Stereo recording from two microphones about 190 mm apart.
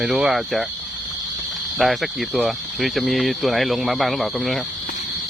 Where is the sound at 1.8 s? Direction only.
Centre (ahead or behind).